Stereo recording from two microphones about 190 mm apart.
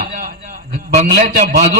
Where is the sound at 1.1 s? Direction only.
50° right (ahead or behind).